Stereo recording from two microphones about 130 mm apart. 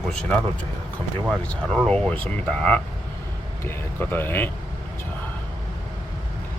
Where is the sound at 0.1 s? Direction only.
5° left (ahead or behind).